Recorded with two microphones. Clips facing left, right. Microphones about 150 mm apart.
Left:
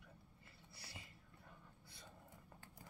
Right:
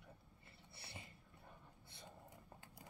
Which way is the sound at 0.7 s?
25° right (ahead or behind).